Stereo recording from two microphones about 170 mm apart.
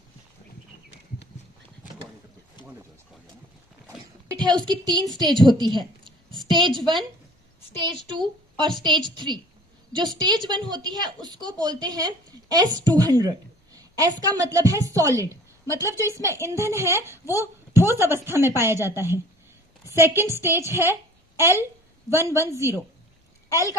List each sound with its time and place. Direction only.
4.6 s a woman's voice: 25° right (ahead or behind)
20.7 s a sound: 15° right (ahead or behind)
22.1 s speech: 15° right (ahead or behind)